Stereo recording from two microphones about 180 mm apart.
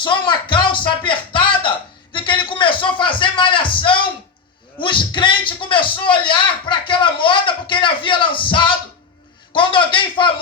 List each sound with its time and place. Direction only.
0.0 s speech: 25° left (ahead or behind)
2.1 s a sound: 25° left (ahead or behind)
4.8 s a man's voice: 25° left (ahead or behind)